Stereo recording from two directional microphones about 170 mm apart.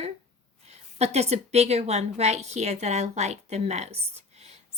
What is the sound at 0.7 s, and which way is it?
A woman's voice, 40° right (ahead or behind).